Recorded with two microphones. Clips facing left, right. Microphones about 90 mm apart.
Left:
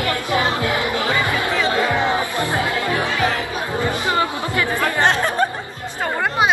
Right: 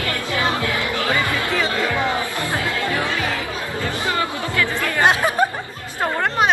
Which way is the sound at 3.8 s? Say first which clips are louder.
Left 3 dB; 20° left (ahead or behind).